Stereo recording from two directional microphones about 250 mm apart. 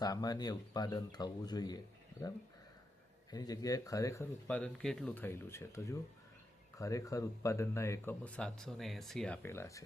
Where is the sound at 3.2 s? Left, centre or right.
Centre.